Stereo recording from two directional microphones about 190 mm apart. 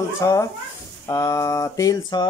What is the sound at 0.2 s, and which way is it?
A man's voice, 15° left (ahead or behind).